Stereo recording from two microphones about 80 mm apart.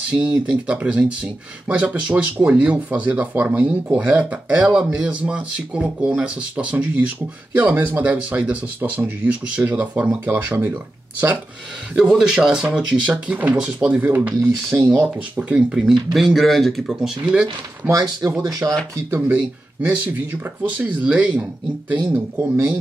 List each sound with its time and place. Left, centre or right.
0.1 s speech: centre
12.0 s speech: centre; by 14.8 s right
14.8 s speech: right
15.1 s speech: centre
17.2 s speech: centre
17.8 s speech: right
19.0 s speech: right
22.1 s speech: right